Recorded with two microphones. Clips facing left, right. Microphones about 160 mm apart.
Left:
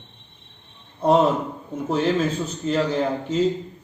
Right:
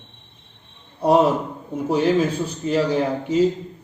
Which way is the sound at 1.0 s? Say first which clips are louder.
Right 1 dB; 10° right (ahead or behind).